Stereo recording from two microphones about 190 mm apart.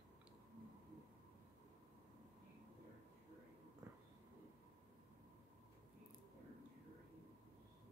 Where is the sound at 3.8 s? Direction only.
15° right (ahead or behind).